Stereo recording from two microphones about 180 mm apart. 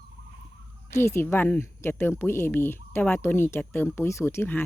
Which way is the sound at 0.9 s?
15° left (ahead or behind).